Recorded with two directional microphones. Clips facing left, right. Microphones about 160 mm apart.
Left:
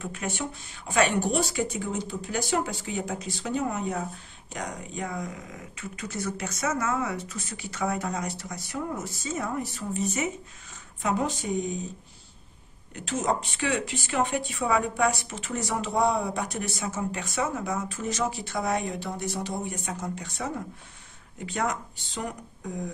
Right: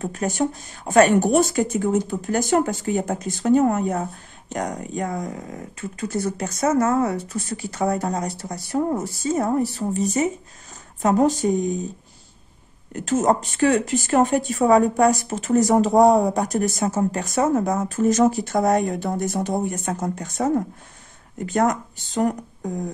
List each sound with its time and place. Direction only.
0.0 s speech: 40° right (ahead or behind)
12.9 s speech: 45° right (ahead or behind)